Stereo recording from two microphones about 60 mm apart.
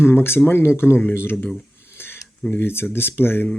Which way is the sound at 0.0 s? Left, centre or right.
Left.